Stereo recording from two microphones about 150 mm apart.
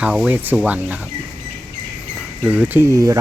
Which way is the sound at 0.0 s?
5° right (ahead or behind).